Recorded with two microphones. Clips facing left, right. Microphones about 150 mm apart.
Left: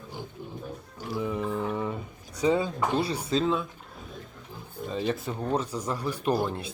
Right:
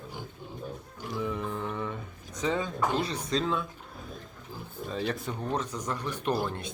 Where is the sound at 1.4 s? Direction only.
5° left (ahead or behind).